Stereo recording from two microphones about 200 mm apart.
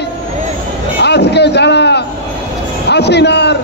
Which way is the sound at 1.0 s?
55° left (ahead or behind).